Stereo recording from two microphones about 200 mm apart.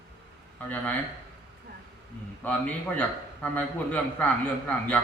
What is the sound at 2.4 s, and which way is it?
A man's voice, 10° left (ahead or behind).